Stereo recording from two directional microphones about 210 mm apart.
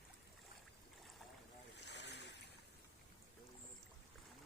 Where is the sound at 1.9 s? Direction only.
55° left (ahead or behind).